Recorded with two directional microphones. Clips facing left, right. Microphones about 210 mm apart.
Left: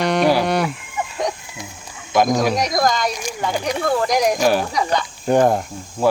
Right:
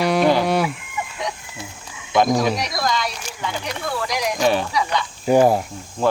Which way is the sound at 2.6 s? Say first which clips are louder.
Left 5 dB; 45° left (ahead or behind).